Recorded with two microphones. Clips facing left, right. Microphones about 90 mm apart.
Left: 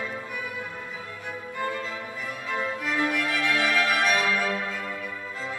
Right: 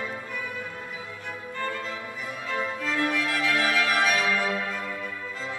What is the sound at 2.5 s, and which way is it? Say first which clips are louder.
Music: even; 15° left (ahead or behind).